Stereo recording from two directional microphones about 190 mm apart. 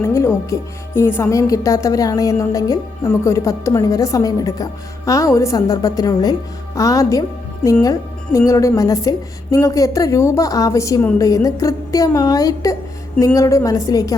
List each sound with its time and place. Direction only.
0.0 s speech: 15° left (ahead or behind)